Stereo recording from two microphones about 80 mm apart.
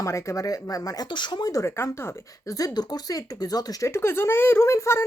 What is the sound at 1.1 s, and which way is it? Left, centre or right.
Speech, left.